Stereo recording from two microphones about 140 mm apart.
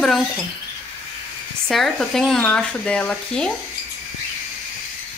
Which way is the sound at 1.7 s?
Centre (ahead or behind).